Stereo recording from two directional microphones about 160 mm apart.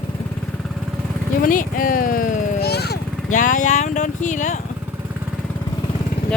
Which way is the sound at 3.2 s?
55° left (ahead or behind).